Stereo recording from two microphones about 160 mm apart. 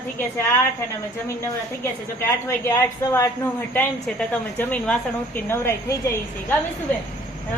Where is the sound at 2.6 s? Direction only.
20° left (ahead or behind).